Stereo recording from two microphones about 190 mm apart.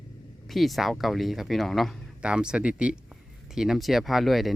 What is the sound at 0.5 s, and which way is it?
Speech, centre (ahead or behind).